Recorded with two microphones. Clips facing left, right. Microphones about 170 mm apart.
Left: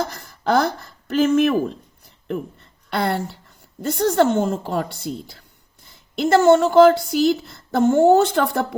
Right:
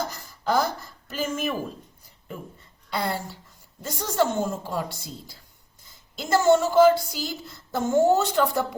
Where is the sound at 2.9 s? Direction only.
65° left (ahead or behind).